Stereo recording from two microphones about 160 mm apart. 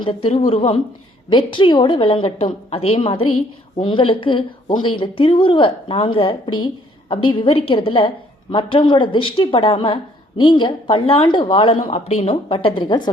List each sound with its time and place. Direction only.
0.0 s a woman's voice: 35° left (ahead or behind)